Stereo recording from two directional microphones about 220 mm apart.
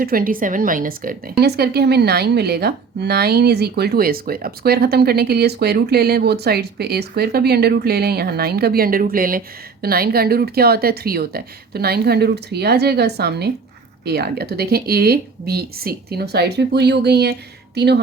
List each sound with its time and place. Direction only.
0.0 s speech: 40° right (ahead or behind)